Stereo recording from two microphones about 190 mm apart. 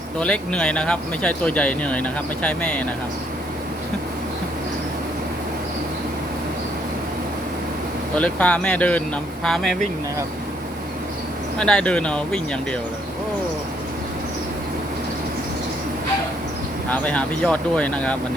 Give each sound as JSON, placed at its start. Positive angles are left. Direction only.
{"t": 0.2, "sound": "speech", "side_deg": 5}
{"t": 8.1, "sound": "speech", "side_deg": 5}
{"t": 11.6, "sound": "speech", "side_deg": 5}
{"t": 16.9, "sound": "speech", "side_deg": 5}